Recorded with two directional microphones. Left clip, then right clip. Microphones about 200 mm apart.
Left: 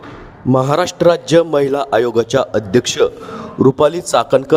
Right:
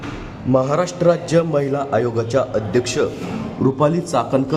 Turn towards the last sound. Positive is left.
turn(degrees=45)  # may be behind; listen again after turning